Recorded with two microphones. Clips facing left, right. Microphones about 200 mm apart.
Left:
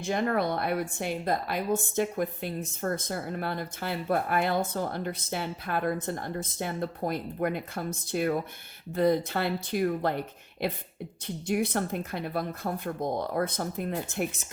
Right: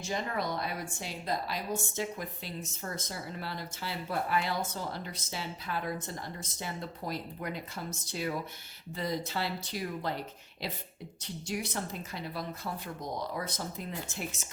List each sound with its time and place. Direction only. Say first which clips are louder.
0.0 s a woman's voice: left 7 dB; 60° left (ahead or behind)